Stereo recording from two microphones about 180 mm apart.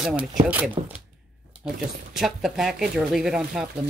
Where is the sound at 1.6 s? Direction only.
Centre (ahead or behind).